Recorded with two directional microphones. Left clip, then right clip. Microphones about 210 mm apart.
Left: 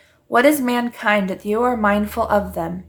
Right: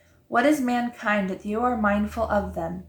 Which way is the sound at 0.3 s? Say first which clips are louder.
Left 6 dB; 50° left (ahead or behind).